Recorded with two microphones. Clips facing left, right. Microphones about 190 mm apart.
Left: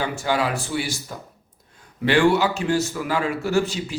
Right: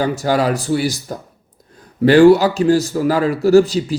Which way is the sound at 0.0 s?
40° right (ahead or behind).